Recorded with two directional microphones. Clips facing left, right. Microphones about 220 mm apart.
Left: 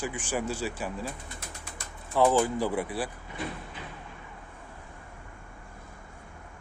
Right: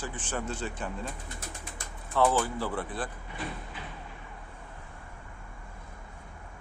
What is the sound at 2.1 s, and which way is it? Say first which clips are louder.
Speech: left 3 dB; 15° left (ahead or behind).